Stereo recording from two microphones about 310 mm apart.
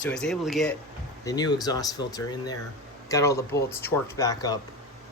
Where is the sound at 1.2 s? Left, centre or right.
Centre.